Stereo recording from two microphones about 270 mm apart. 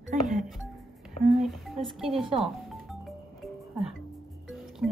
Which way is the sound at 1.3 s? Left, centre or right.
Centre.